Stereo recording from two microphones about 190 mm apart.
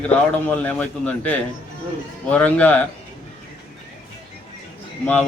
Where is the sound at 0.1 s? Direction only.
5° left (ahead or behind).